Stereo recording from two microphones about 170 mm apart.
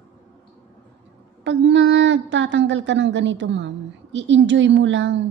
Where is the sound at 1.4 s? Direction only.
90° right.